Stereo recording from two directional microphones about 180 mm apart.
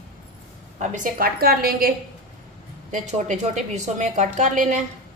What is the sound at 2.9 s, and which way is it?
A woman's voice, 40° right (ahead or behind).